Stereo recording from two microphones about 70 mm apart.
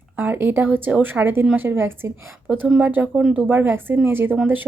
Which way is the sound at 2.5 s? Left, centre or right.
Centre.